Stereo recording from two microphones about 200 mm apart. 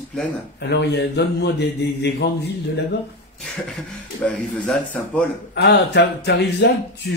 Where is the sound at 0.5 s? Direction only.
55° left (ahead or behind).